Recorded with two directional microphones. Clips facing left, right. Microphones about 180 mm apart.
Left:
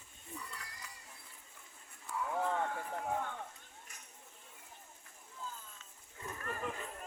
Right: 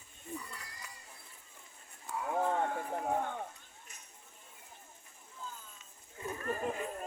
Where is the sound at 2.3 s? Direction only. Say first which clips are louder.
Right 4 dB; 35° right (ahead or behind).